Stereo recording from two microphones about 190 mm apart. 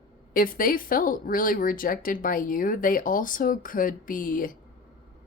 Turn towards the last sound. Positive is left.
turn(degrees=45)  # may be behind; listen again after turning